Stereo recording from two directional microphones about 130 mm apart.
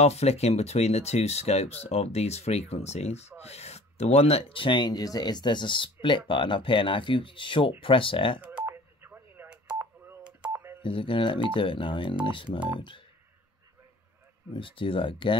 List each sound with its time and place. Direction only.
0.0 s speech: 55° left (ahead or behind)
8.4 s telephone dialing: 15° right (ahead or behind)
10.8 s speech: 40° left (ahead or behind)
14.5 s speech: 40° left (ahead or behind)